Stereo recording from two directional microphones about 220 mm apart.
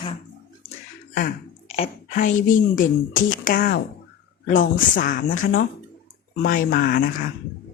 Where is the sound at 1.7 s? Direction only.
30° left (ahead or behind).